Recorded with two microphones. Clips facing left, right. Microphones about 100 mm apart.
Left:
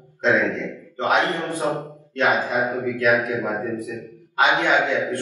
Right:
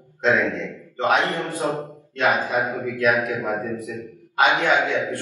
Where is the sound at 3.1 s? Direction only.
15° left (ahead or behind).